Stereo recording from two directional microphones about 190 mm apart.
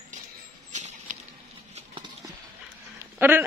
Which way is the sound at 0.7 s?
40° right (ahead or behind).